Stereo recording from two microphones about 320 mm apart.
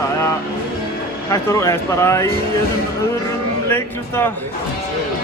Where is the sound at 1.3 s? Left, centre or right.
Centre.